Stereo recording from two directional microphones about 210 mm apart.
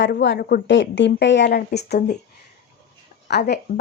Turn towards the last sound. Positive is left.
turn(degrees=50)  # may be behind; listen again after turning